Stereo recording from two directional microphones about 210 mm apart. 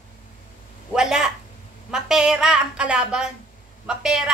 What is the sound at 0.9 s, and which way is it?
A woman's voice, 5° right (ahead or behind).